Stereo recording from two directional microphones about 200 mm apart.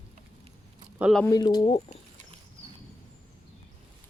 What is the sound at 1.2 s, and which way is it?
Speech, 20° left (ahead or behind).